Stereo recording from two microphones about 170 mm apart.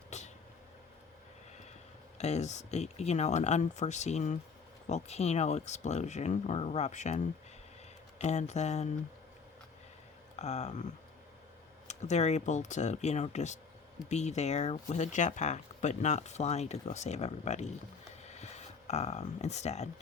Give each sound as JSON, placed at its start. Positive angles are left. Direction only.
{"t": 0.1, "sound": "vehicle", "side_deg": 45}
{"t": 2.1, "sound": "speech", "side_deg": 40}
{"t": 8.2, "sound": "speech", "side_deg": 40}
{"t": 10.3, "sound": "speech", "side_deg": 40}
{"t": 11.9, "sound": "speech", "side_deg": 40}